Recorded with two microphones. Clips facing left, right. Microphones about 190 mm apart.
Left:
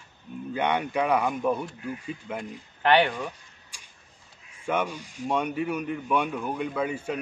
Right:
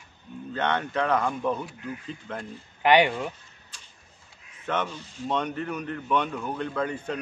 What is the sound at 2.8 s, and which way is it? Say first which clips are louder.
Speech: right 1 dB; 15° right (ahead or behind).